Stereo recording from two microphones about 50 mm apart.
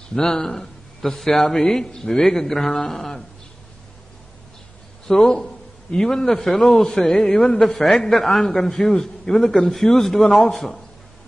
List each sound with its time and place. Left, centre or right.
0.1 s a man's voice: centre
5.0 s a man's voice: centre
7.2 s a man's voice: centre
7.6 s a man's voice: centre